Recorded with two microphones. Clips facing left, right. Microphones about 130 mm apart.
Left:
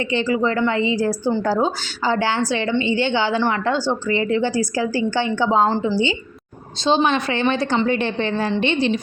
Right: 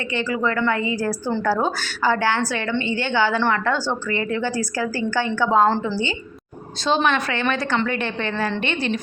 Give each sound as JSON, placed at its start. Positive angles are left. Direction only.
{"t": 0.1, "sound": "a woman's voice", "side_deg": 25}
{"t": 6.8, "sound": "a woman's voice", "side_deg": 25}